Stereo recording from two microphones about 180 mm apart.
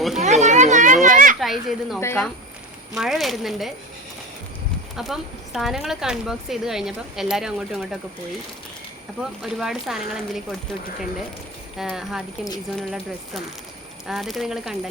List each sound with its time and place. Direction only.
0.2 s children playing: 40° right (ahead or behind)
1.4 s speech: centre (ahead or behind)
2.0 s speech: 15° left (ahead or behind)
2.9 s speech: centre (ahead or behind)
4.9 s speech: centre (ahead or behind)
9.4 s speech: centre (ahead or behind)
11.8 s speech: centre (ahead or behind)
14.1 s speech: centre (ahead or behind)